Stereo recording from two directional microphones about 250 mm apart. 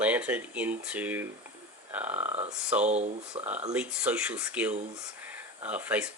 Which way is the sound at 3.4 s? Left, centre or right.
Centre.